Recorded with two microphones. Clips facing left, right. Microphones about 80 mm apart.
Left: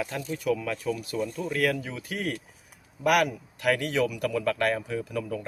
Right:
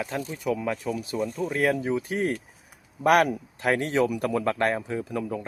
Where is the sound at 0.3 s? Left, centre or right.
Right.